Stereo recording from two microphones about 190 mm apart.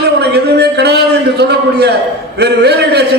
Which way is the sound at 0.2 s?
60° right (ahead or behind).